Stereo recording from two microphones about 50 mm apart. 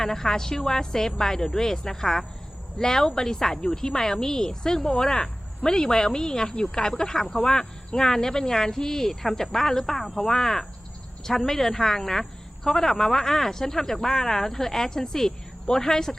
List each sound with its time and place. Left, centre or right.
0.0 s speech: centre